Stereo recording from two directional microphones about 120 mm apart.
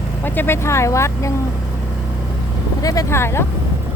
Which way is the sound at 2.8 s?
30° left (ahead or behind).